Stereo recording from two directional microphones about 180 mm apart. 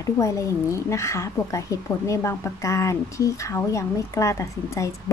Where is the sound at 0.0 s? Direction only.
15° left (ahead or behind).